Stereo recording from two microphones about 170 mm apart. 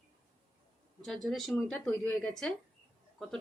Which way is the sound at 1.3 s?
Centre (ahead or behind).